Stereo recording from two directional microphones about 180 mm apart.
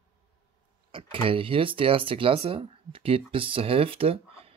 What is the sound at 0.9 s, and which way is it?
Speech, 30° right (ahead or behind).